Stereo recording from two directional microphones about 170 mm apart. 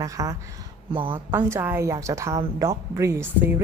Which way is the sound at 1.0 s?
30° right (ahead or behind).